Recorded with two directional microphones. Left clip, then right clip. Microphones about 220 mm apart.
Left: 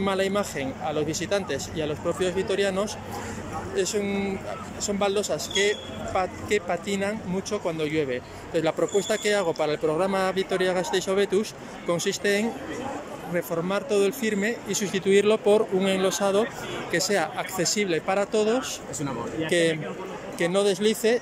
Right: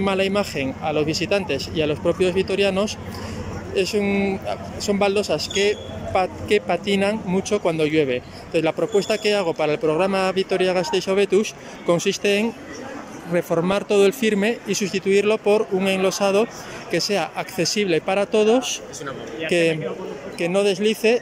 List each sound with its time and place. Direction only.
0.0 s speech: 5° right (ahead or behind)